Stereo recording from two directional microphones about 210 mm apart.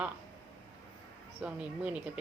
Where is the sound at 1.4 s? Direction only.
5° right (ahead or behind).